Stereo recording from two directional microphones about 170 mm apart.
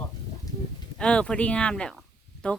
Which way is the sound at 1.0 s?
5° left (ahead or behind).